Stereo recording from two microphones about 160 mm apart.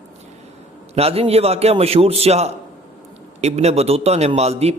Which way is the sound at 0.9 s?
40° right (ahead or behind).